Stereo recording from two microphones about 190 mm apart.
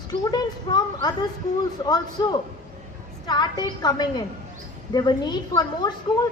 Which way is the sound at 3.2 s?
20° left (ahead or behind).